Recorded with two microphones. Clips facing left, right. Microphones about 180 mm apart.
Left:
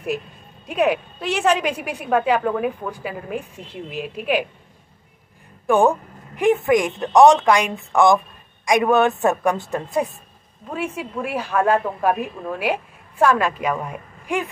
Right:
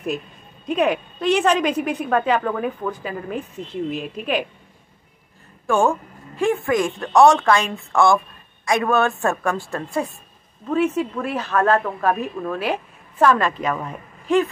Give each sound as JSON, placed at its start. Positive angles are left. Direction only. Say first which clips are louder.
{"t": 0.7, "sound": "a woman's voice", "louder": "even", "side_deg": 10}
{"t": 5.7, "sound": "a woman's voice", "louder": "left 2 dB", "side_deg": 20}